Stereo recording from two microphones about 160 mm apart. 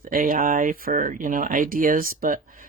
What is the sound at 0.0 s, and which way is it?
Speech, 60° right (ahead or behind).